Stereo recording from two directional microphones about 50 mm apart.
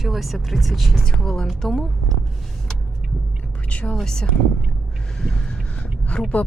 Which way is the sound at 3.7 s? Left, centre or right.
Left.